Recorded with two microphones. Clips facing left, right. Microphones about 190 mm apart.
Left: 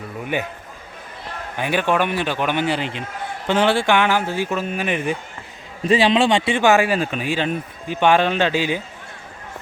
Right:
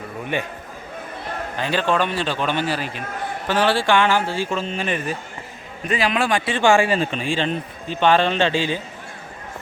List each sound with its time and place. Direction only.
1.5 s speech: 15° left (ahead or behind)
5.8 s speech: 30° left (ahead or behind)
6.6 s speech: 5° left (ahead or behind)